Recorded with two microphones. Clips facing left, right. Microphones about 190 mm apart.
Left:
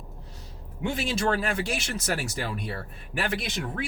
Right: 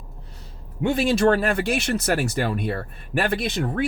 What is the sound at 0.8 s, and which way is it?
Speech, 60° right (ahead or behind).